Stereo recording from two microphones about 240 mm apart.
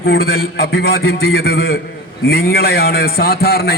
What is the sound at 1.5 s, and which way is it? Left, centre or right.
Speech, left.